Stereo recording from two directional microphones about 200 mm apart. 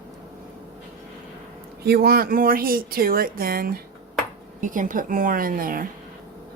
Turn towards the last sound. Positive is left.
turn(degrees=-45)  # may be behind; listen again after turning